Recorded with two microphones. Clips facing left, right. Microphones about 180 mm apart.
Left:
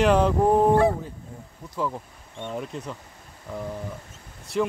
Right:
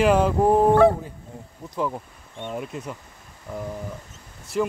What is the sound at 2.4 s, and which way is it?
Speech, 5° right (ahead or behind).